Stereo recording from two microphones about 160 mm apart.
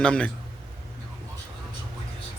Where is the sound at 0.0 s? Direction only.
5° left (ahead or behind).